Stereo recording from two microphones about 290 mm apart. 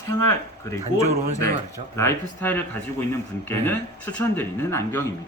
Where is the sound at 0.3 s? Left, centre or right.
Centre.